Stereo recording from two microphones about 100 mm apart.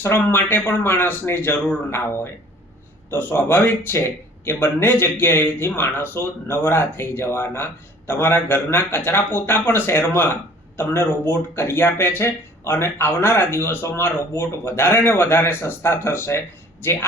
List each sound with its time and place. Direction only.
0.0 s speech: 25° left (ahead or behind)